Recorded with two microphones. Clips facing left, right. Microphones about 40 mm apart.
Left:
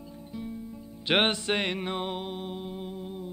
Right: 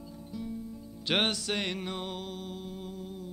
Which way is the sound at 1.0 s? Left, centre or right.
Left.